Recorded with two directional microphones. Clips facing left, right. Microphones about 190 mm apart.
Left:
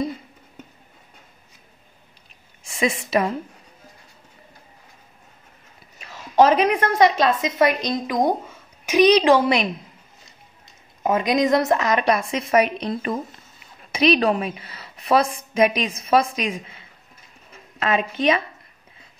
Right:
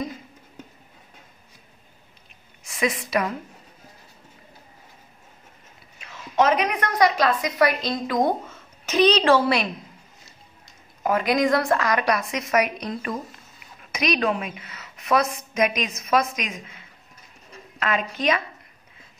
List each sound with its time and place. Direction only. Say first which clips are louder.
2.6 s a woman's voice: left 2 dB; 25° left (ahead or behind)
5.9 s a woman's voice: left 5 dB; 35° left (ahead or behind); by 9.7 s 20° left (ahead or behind)
11.0 s a woman's voice: left 2 dB; 20° left (ahead or behind)
17.7 s a woman's voice: left 4 dB; 25° left (ahead or behind)